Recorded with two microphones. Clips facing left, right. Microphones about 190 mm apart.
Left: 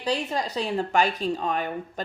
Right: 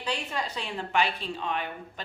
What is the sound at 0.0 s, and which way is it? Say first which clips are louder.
Speech: left 6 dB; 35° left (ahead or behind).